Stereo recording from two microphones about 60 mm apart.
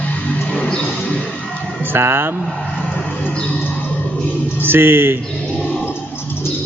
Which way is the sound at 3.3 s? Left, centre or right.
Left.